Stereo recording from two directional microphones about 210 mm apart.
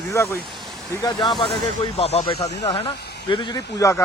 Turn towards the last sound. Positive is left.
turn(degrees=15)  # may be behind; listen again after turning